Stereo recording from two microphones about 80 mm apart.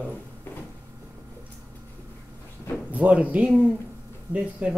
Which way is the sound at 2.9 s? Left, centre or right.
Centre.